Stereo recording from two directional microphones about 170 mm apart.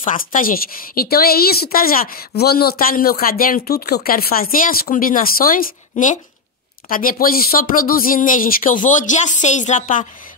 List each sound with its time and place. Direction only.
0.0 s a woman's voice: 50° left (ahead or behind)